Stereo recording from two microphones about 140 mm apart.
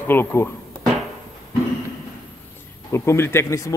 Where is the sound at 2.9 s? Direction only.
20° left (ahead or behind).